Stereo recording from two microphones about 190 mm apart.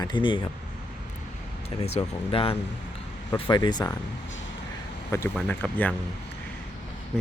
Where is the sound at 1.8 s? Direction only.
30° left (ahead or behind).